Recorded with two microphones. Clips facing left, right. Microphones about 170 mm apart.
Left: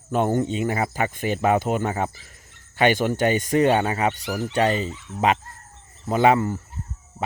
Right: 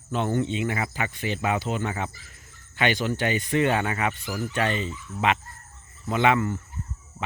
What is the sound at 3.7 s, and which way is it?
Speech, 30° left (ahead or behind).